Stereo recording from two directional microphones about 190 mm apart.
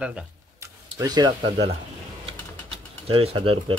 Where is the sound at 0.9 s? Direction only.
20° right (ahead or behind).